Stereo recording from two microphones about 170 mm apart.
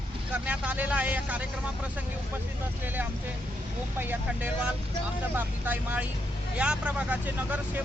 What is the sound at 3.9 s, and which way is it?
Speech, 10° right (ahead or behind).